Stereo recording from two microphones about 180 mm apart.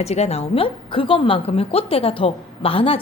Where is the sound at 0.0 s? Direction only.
35° left (ahead or behind).